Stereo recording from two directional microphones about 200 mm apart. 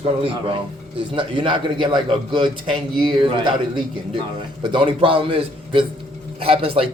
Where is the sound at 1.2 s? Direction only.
25° right (ahead or behind).